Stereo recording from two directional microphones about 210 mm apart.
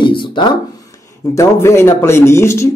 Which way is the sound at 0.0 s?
25° left (ahead or behind).